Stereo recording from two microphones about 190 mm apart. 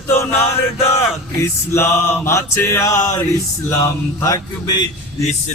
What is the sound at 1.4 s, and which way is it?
Mantra, 15° left (ahead or behind).